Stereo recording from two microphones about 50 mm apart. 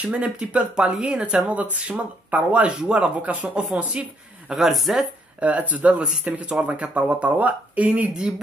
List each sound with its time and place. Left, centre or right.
0.1 s speech: right
4.5 s speech: centre
5.4 s speech: right